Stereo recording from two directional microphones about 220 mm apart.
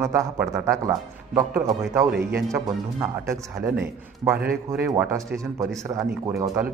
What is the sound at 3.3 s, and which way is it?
A man's voice, 10° right (ahead or behind).